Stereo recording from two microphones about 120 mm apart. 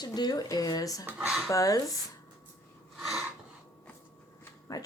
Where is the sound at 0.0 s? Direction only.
35° left (ahead or behind).